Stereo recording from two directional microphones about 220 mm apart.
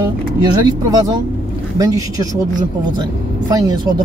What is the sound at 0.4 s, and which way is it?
Speech, 20° right (ahead or behind).